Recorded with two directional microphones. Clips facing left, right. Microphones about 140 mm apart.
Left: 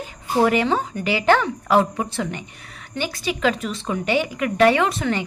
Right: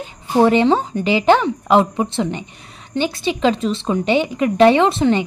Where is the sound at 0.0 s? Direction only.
25° right (ahead or behind).